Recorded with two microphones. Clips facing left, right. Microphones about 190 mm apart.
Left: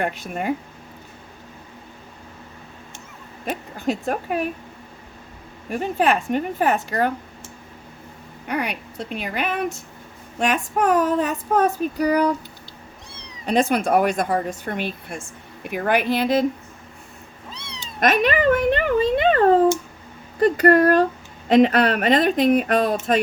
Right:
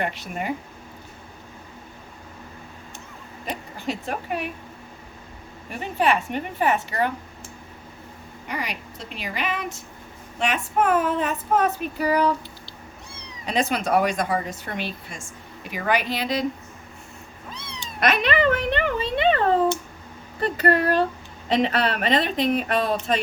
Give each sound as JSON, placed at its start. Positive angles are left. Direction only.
{"t": 0.0, "sound": "speech", "side_deg": 50}
{"t": 3.4, "sound": "speech", "side_deg": 45}
{"t": 5.7, "sound": "speech", "side_deg": 45}
{"t": 8.4, "sound": "a woman's voice", "side_deg": 60}
{"t": 10.4, "sound": "child singing", "side_deg": 45}
{"t": 13.4, "sound": "speech", "side_deg": 50}
{"t": 18.0, "sound": "speech", "side_deg": 45}